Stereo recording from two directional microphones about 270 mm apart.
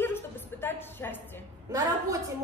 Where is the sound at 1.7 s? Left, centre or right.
Centre.